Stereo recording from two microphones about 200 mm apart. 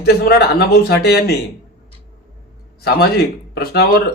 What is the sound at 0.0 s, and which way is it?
Speech, 50° left (ahead or behind).